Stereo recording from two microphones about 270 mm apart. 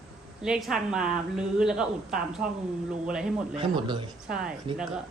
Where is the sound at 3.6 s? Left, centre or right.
Centre.